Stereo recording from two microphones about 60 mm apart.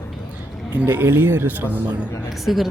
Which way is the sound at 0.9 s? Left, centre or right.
Right.